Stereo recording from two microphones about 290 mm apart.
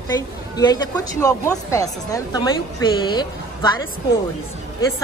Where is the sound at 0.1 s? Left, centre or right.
Centre.